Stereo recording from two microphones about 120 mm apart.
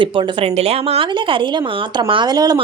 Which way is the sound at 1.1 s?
45° right (ahead or behind).